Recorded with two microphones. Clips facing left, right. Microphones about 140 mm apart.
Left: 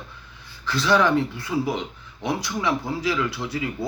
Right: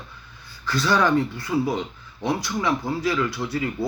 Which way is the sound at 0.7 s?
20° left (ahead or behind).